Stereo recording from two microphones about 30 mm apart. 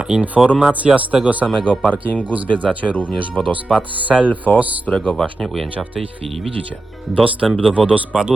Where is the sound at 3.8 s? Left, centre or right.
Right.